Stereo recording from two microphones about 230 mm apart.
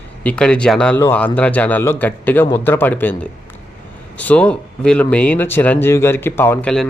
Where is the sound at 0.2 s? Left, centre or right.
Centre.